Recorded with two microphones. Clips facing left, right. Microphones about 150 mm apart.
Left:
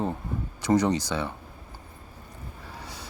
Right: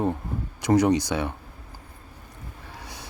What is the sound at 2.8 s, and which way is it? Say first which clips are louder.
Vehicle: even; 10° right (ahead or behind).